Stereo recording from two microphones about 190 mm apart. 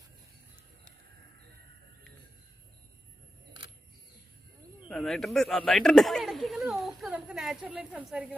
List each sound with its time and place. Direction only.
4.8 s speech: centre (ahead or behind)